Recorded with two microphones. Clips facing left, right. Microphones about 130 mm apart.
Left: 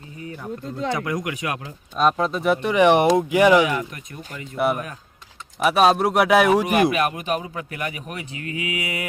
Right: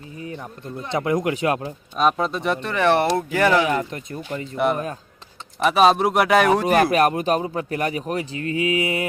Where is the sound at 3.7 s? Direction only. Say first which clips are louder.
Right 3 dB; 30° right (ahead or behind).